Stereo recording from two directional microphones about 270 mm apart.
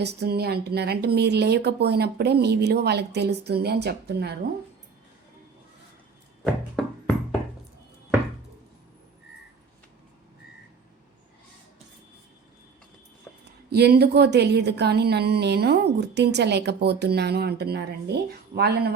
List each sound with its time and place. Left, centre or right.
0.0 s a woman's voice: right
6.8 s music: centre
13.4 s a woman's voice: right